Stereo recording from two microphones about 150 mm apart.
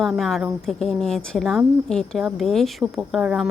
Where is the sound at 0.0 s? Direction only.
Centre (ahead or behind).